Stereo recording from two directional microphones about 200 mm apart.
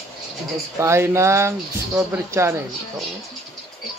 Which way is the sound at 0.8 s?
15° right (ahead or behind).